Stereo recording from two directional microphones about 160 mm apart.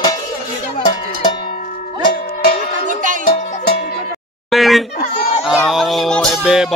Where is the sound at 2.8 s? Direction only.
55° right (ahead or behind).